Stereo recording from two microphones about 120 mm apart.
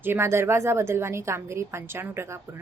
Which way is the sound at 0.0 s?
20° right (ahead or behind).